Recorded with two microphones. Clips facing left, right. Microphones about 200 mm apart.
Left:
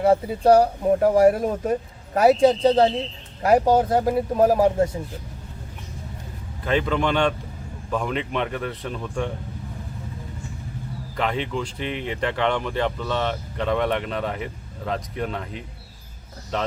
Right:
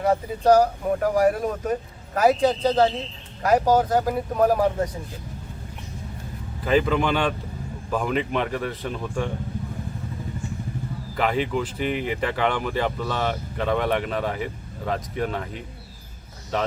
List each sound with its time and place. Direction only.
0.0 s speech: 30° left (ahead or behind)
6.7 s speech: 5° right (ahead or behind)
11.2 s speech: 5° right (ahead or behind)